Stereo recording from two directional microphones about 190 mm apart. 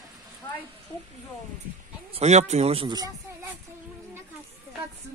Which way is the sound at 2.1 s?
35° right (ahead or behind).